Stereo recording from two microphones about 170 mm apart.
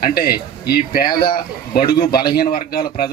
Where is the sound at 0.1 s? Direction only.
65° left (ahead or behind).